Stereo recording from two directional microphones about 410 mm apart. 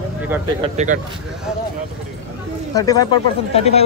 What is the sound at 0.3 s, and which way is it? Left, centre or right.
Speech, centre.